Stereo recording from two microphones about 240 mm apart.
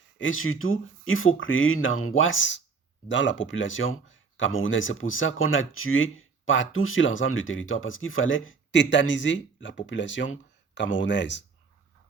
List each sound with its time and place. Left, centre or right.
0.2 s speech: left